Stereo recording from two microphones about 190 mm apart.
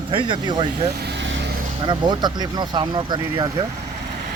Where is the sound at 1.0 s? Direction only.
70° right (ahead or behind).